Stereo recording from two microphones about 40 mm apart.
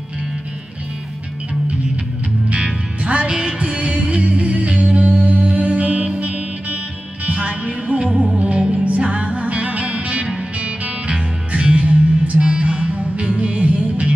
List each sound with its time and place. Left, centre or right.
2.5 s music: right